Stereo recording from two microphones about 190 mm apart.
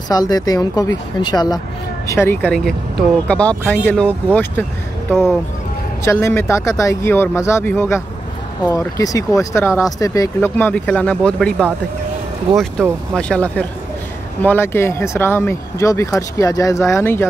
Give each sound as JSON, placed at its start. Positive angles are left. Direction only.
{"t": 0.1, "sound": "speech", "side_deg": 20}
{"t": 6.0, "sound": "speech", "side_deg": 15}
{"t": 13.1, "sound": "speech", "side_deg": 5}